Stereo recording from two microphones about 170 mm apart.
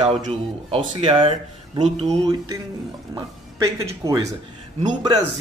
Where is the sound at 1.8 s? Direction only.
40° right (ahead or behind).